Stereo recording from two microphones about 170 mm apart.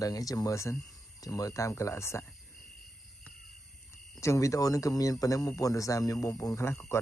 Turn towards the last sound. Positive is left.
turn(degrees=15)  # may be behind; listen again after turning